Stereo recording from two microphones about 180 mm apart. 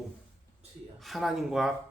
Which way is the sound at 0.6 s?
35° right (ahead or behind).